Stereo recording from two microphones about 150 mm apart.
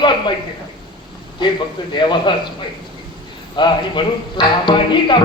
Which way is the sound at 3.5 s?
30° left (ahead or behind).